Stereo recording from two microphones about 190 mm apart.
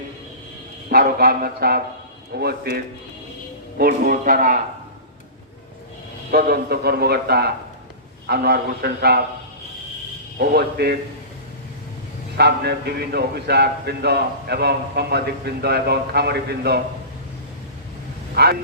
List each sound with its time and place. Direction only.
0.9 s a man's voice: 55° right (ahead or behind)
6.3 s a man's voice: 55° right (ahead or behind)
10.3 s a man's voice: 55° right (ahead or behind)
12.4 s a man's voice: 60° right (ahead or behind)
18.4 s a man's voice: 55° right (ahead or behind)